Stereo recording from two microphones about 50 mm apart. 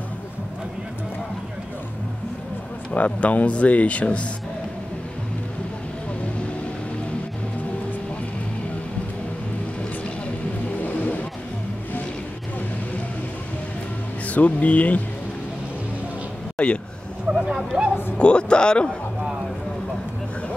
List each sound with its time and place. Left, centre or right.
2.9 s speech: left
10.8 s vehicle: left
14.2 s speech: left
16.5 s speech: left
17.7 s speech: right
18.1 s speech: left